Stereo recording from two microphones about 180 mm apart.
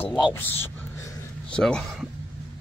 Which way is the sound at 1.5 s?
5° left (ahead or behind).